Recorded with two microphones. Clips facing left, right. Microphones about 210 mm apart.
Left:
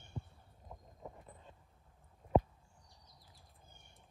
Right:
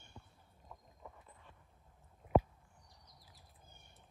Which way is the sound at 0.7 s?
25° left (ahead or behind).